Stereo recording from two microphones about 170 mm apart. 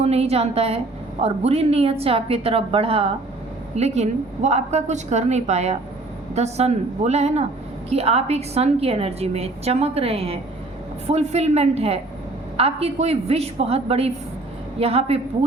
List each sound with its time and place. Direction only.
0.0 s a woman's voice: 35° right (ahead or behind)